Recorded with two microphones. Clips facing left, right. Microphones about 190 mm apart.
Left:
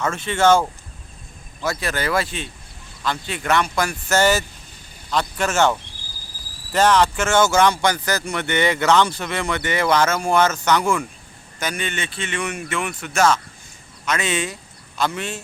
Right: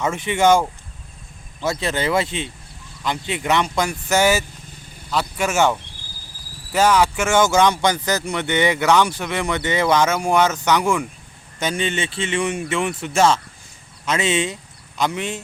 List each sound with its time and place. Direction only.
0.0 s speech: 15° right (ahead or behind)
1.6 s speech: 25° right (ahead or behind)
11.6 s speech: 25° right (ahead or behind)